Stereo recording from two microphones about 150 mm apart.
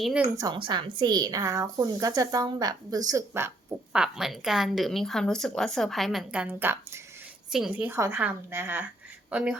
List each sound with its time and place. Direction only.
0.0 s a woman's voice: 5° right (ahead or behind)
0.3 s a woman's voice: 30° right (ahead or behind)
3.9 s a woman's voice: 5° right (ahead or behind)